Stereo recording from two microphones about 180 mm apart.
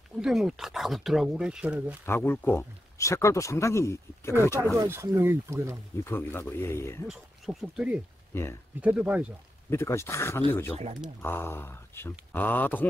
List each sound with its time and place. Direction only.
0.2 s speech: centre (ahead or behind)
2.0 s speech: 10° left (ahead or behind)
4.7 s speech: 15° right (ahead or behind)
6.0 s speech: 10° left (ahead or behind)
7.1 s speech: 5° right (ahead or behind)
8.3 s speech: 15° left (ahead or behind)
8.8 s speech: 5° right (ahead or behind)
9.7 s speech: 15° left (ahead or behind)